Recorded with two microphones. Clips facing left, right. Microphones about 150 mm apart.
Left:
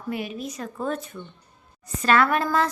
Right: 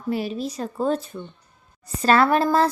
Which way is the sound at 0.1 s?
30° right (ahead or behind).